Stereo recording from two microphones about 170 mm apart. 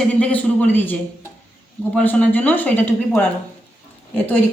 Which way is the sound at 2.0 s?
10° left (ahead or behind).